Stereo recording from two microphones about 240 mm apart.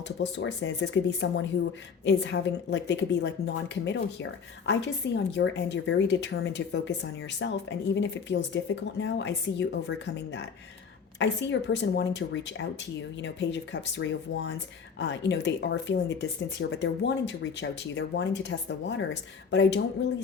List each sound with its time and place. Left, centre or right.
0.2 s a woman's voice: left
11.2 s a woman's voice: left